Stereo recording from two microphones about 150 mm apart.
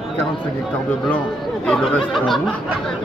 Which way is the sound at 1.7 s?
Centre (ahead or behind).